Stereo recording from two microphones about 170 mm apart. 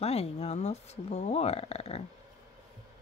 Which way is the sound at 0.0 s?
35° left (ahead or behind).